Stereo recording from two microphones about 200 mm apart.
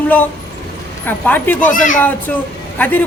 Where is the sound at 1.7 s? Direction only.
40° left (ahead or behind).